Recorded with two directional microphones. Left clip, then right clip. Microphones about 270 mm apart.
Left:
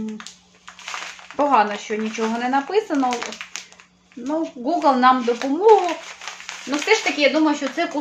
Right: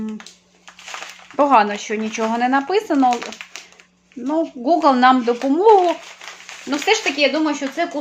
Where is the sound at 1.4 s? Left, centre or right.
Right.